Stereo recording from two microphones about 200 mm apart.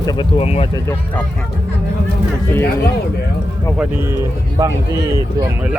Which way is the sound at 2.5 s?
10° left (ahead or behind).